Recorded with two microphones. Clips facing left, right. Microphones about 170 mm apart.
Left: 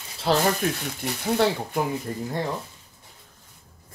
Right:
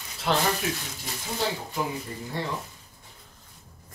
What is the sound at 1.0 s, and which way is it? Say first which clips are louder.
Speech: left 10 dB; 65° left (ahead or behind).